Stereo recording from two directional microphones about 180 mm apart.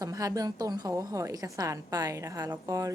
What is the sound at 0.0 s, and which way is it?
A woman's voice, 20° right (ahead or behind).